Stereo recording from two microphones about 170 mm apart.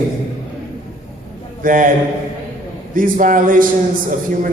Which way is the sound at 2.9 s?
50° right (ahead or behind).